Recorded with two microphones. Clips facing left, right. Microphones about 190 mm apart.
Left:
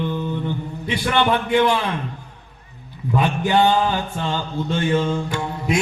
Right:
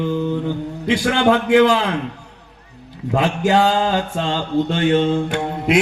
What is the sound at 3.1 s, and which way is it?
Mantra, 90° right.